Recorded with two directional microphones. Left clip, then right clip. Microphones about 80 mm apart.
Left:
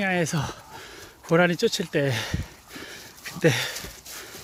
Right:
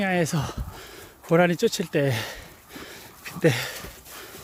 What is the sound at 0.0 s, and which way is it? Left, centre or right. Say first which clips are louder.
Speech: even; right.